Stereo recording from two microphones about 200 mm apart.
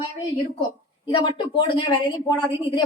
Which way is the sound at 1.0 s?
25° left (ahead or behind).